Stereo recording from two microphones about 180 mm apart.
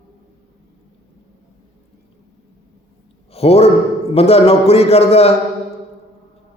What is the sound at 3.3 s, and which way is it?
A man's voice, 35° left (ahead or behind).